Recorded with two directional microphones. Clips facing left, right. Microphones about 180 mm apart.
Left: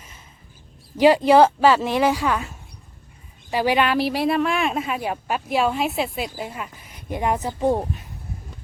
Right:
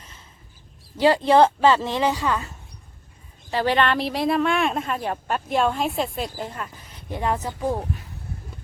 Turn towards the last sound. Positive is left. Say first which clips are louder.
# left 4 dB
turn(degrees=20)  # may be behind; listen again after turning